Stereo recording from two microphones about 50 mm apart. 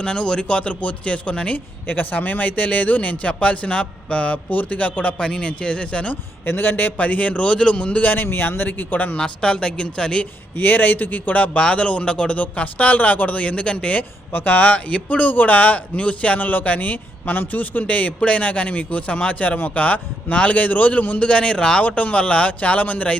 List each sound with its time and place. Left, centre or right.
0.0 s speech: centre
1.5 s speech: left
5.1 s speech: centre
6.4 s a man's voice: left
6.9 s speech: left
9.1 s speech: centre
10.6 s speech: left; by 12.4 s centre
12.4 s speech: left
14.3 s speech: left
21.2 s speech: centre
21.8 s speech: left